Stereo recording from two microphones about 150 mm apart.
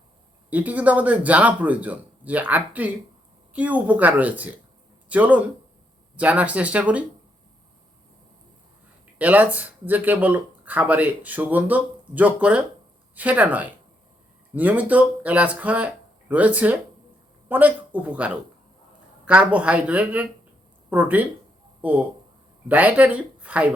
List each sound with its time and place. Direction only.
0.5 s speech: 10° right (ahead or behind)
9.1 s speech: 10° right (ahead or behind)